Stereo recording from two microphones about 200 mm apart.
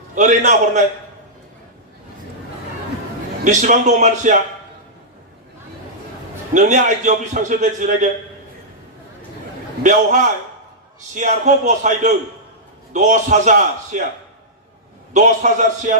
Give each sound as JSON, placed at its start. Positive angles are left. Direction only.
{"t": 0.2, "sound": "a man's voice", "side_deg": -40}
{"t": 3.4, "sound": "a man's voice", "side_deg": -40}
{"t": 6.5, "sound": "a man's voice", "side_deg": -40}
{"t": 9.8, "sound": "a man's voice", "side_deg": -40}
{"t": 15.1, "sound": "a man's voice", "side_deg": -40}